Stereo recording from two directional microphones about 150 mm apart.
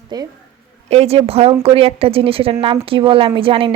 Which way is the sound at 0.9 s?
45° right (ahead or behind).